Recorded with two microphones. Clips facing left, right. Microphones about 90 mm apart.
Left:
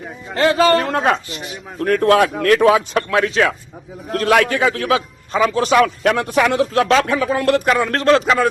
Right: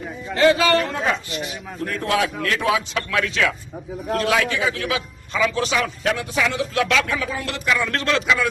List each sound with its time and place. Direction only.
0.3 s speech: 40° left (ahead or behind)
0.9 s a man's voice: 60° left (ahead or behind)
3.1 s speech: 35° left (ahead or behind)
4.2 s a man's voice: 50° left (ahead or behind)
5.7 s speech: 55° left (ahead or behind)
6.7 s speech: 40° left (ahead or behind)
7.3 s speech: 55° left (ahead or behind)